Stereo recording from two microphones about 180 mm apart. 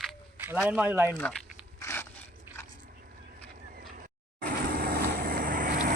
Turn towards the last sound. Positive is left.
turn(degrees=-50)  # may be behind; listen again after turning